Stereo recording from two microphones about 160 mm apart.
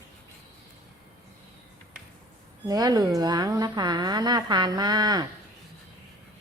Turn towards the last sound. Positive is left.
turn(degrees=-25)  # may be behind; listen again after turning